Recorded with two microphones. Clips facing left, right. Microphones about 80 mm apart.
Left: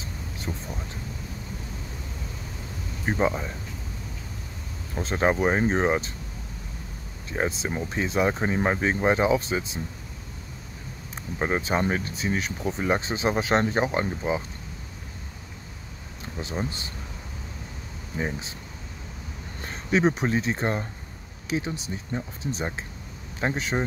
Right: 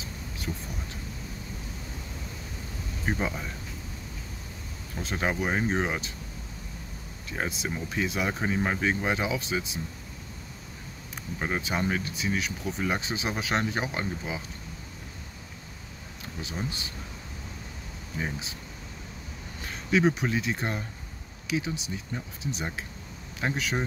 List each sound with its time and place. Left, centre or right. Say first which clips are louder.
0.5 s speech: left 2 dB; left
3.1 s speech: left 6 dB; left
4.9 s speech: left 6 dB; left
7.2 s speech: left 5 dB; left
11.3 s speech: left 5 dB; left
16.3 s speech: left 4 dB; left
18.1 s speech: left 4 dB; left
19.6 s speech: left 1 dB; left